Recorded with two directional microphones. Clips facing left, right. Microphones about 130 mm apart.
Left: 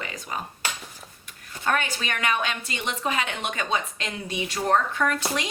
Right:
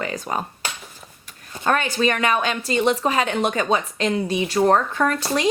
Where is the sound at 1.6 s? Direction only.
40° right (ahead or behind).